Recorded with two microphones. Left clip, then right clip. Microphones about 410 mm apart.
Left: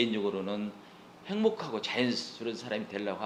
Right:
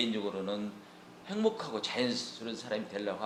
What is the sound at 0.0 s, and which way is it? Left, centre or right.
Speech, left.